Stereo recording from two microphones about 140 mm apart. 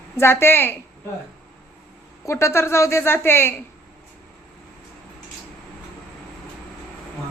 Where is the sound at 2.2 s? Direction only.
20° left (ahead or behind).